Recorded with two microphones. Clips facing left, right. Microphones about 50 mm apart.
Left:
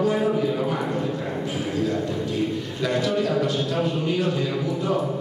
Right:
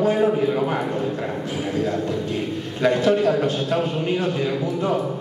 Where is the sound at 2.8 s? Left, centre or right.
Right.